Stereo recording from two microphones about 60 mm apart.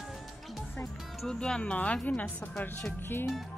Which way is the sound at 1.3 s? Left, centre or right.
Centre.